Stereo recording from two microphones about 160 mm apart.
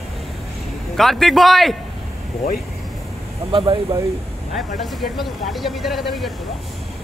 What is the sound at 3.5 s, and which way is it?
Speech, 30° right (ahead or behind).